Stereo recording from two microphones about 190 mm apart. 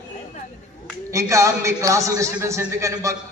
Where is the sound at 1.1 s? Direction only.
15° right (ahead or behind).